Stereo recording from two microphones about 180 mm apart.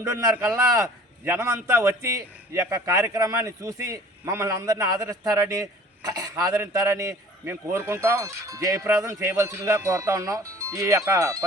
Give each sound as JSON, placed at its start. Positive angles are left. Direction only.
{"t": 0.1, "sound": "a man's voice", "side_deg": -15}